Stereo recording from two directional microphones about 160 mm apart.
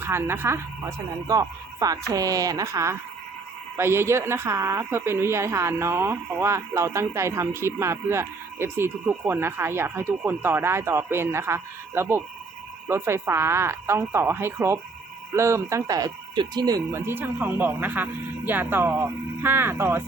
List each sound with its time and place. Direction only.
0.0 s a woman's voice: 15° right (ahead or behind)